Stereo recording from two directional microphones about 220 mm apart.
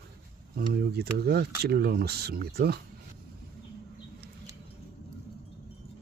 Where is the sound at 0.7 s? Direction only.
45° right (ahead or behind).